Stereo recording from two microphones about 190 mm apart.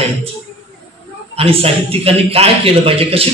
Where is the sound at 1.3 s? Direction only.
30° right (ahead or behind).